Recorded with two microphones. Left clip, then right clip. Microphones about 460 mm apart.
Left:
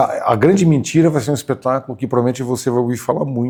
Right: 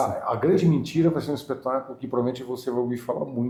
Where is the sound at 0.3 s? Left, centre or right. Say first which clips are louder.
Left 7 dB; left.